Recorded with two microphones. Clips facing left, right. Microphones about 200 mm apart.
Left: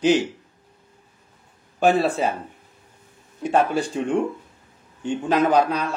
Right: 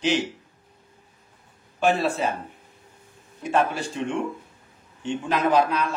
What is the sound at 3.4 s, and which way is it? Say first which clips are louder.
Speech: left 3 dB; 40° left (ahead or behind).